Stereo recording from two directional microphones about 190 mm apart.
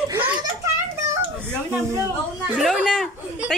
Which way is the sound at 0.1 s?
10° right (ahead or behind).